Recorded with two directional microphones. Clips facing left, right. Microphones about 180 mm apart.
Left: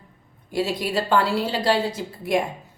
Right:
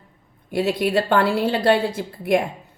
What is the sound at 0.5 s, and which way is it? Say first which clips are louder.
A woman's voice: right 4 dB; 60° right (ahead or behind).